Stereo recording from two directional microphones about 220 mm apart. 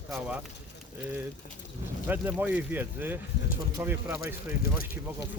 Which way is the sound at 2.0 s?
10° right (ahead or behind).